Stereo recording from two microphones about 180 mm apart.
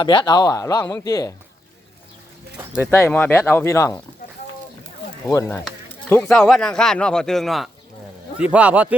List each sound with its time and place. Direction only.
0.0 s a man's voice: 25° left (ahead or behind)
2.7 s speech: 15° left (ahead or behind)
5.3 s a man's voice: 15° left (ahead or behind); by 9.0 s 10° right (ahead or behind)